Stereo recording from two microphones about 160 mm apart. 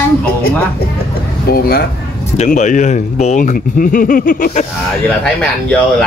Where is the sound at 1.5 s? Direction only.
75° left (ahead or behind).